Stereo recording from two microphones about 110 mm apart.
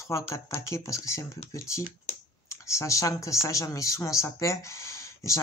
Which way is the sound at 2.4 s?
25° left (ahead or behind).